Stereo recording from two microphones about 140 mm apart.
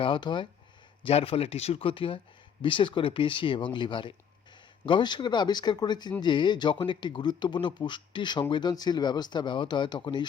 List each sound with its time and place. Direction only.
0.0 s speech: 35° left (ahead or behind)